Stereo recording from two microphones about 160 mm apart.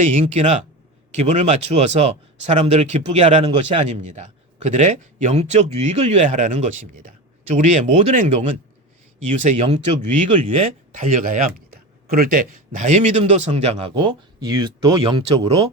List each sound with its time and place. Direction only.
0.0 s speech: 50° right (ahead or behind); by 10.8 s 35° right (ahead or behind)
10.9 s speech: 55° right (ahead or behind); by 15.7 s 35° right (ahead or behind)